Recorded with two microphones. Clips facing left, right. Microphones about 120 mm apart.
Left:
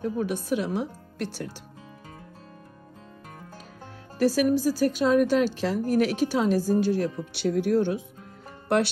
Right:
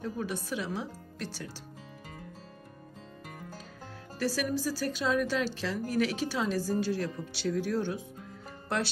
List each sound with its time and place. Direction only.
0.0 s speech: 55° left (ahead or behind)
4.2 s speech: 50° left (ahead or behind)